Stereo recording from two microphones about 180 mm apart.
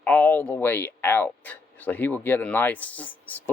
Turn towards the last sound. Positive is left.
turn(degrees=10)  # may be behind; listen again after turning